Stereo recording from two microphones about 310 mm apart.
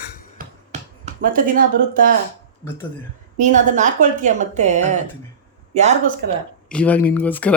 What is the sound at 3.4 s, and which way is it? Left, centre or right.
A woman's voice, right.